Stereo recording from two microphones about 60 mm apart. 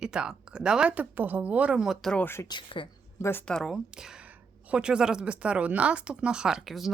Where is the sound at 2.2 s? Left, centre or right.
Left.